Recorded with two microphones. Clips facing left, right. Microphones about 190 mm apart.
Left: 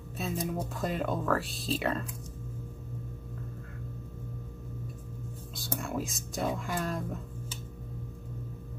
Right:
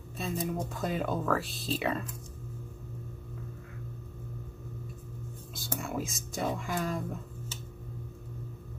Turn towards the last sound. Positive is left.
turn(degrees=0)  # may be behind; listen again after turning